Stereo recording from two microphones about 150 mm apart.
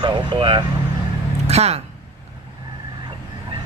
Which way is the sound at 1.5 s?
45° right (ahead or behind).